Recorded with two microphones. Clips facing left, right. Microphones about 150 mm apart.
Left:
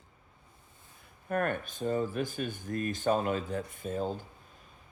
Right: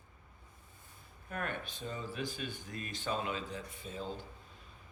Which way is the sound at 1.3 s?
50° left (ahead or behind).